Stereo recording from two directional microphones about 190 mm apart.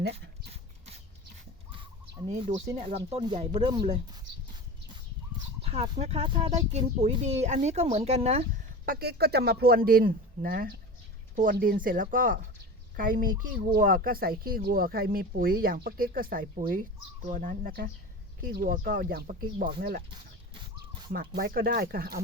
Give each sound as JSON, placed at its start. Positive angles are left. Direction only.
{"t": 0.1, "sound": "dog", "side_deg": -30}
{"t": 2.3, "sound": "speech", "side_deg": -35}
{"t": 5.6, "sound": "speech", "side_deg": -30}
{"t": 8.9, "sound": "speech", "side_deg": -55}
{"t": 20.5, "sound": "a sound", "side_deg": -25}
{"t": 21.1, "sound": "speech", "side_deg": -55}